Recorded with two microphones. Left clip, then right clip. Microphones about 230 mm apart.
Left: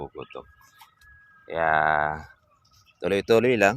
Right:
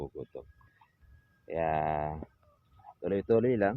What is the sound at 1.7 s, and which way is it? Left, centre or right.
Speech, centre.